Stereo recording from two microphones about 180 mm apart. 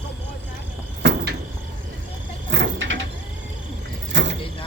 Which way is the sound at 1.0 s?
70° right (ahead or behind).